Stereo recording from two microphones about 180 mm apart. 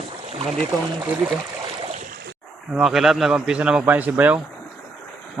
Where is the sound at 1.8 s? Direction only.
40° right (ahead or behind).